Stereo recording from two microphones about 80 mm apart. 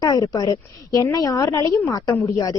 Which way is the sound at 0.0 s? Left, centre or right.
Left.